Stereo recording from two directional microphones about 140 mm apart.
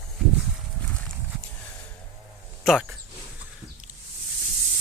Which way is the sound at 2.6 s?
Centre (ahead or behind).